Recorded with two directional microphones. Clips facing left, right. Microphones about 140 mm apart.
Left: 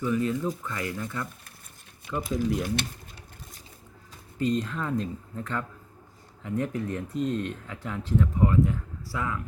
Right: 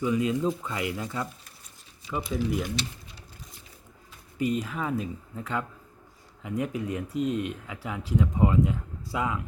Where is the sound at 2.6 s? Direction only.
50° left (ahead or behind).